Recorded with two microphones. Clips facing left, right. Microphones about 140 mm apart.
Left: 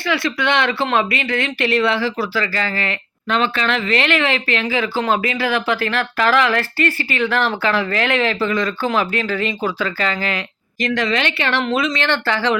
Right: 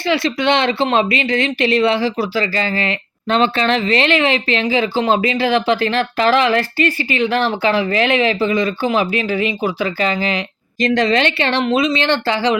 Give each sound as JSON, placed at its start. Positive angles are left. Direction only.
{"t": 0.1, "sound": "speech", "side_deg": -25}
{"t": 10.8, "sound": "speech", "side_deg": -30}